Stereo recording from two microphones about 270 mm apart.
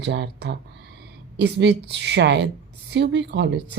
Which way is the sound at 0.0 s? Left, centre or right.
Right.